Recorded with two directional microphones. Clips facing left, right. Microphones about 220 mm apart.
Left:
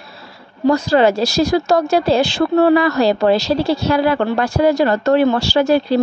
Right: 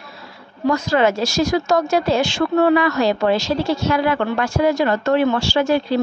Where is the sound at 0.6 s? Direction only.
35° left (ahead or behind).